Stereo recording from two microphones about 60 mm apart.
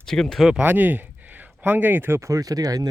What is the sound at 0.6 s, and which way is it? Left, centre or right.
Speech, right.